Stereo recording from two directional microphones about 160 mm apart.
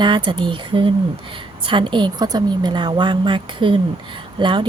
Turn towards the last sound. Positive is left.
turn(degrees=-30)  # may be behind; listen again after turning